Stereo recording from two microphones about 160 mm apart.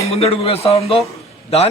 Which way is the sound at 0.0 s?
40° left (ahead or behind).